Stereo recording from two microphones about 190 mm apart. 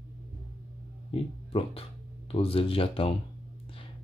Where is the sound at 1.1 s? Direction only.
30° left (ahead or behind).